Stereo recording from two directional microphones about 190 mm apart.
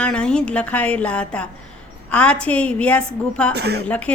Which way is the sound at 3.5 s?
60° right (ahead or behind).